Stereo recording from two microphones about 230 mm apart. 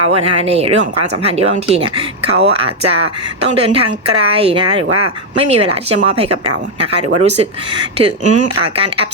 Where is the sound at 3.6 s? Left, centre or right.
Right.